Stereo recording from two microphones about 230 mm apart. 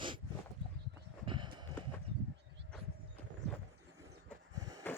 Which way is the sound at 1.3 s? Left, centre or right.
Right.